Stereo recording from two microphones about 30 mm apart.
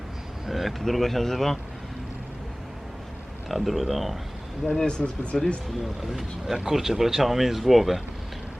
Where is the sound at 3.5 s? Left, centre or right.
Centre.